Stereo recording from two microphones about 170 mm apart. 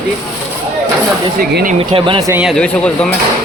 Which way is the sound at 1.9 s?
30° right (ahead or behind).